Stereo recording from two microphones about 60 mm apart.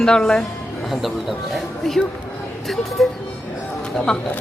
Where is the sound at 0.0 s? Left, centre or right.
Centre.